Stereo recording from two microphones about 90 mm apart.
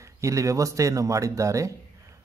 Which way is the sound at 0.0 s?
35° right (ahead or behind).